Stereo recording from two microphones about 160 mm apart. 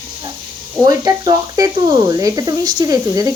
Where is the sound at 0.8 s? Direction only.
25° right (ahead or behind).